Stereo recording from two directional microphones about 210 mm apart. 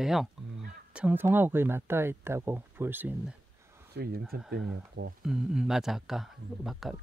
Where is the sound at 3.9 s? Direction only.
50° right (ahead or behind).